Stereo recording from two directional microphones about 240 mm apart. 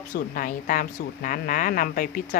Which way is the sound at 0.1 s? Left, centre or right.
Left.